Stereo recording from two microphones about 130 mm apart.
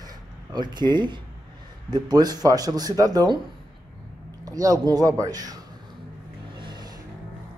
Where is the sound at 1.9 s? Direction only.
30° right (ahead or behind).